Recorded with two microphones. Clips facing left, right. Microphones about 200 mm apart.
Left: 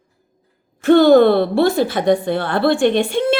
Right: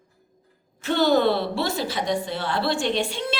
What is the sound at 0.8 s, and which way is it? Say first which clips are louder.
A woman's voice: left 10 dB; 55° left (ahead or behind).